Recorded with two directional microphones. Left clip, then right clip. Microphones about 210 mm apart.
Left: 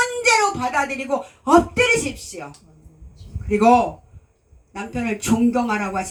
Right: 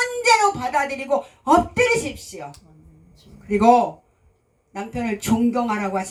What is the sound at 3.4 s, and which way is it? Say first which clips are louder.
A woman's voice: even; 45° right (ahead or behind).